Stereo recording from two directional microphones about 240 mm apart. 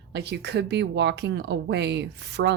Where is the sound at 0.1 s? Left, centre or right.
Right.